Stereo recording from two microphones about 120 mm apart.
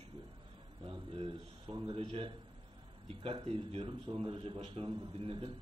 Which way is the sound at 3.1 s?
50° right (ahead or behind).